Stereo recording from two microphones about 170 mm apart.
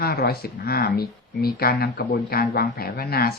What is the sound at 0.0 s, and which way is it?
Speech, 65° left (ahead or behind).